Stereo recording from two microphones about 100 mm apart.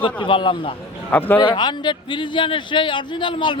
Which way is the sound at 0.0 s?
55° left (ahead or behind).